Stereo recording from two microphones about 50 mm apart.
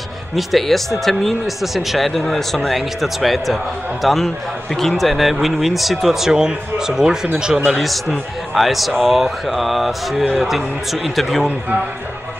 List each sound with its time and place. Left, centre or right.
0.4 s a man's voice: centre
7.7 s speech: centre